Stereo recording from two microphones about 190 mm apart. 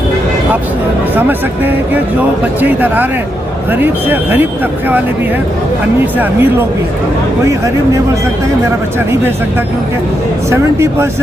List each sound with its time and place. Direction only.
1.1 s speech: 10° right (ahead or behind)
6.1 s speech: 10° right (ahead or behind)
10.5 s speech: 15° right (ahead or behind)